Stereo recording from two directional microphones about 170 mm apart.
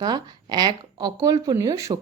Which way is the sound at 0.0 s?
25° right (ahead or behind).